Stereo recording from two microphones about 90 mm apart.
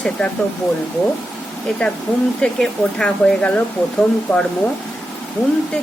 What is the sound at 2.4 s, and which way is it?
Speech, 10° left (ahead or behind).